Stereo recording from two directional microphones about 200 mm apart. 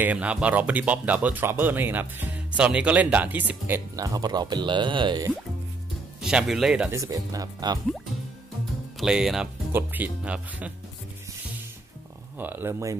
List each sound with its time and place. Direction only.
0.0 s speech: 5° right (ahead or behind); by 5.3 s 20° right (ahead or behind)
6.2 s speech: centre (ahead or behind)
7.0 s speech: 15° right (ahead or behind)
9.0 s speech: centre (ahead or behind)
12.4 s speech: 10° right (ahead or behind)